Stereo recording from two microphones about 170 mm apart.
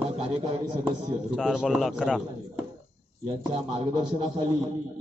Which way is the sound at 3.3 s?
30° right (ahead or behind).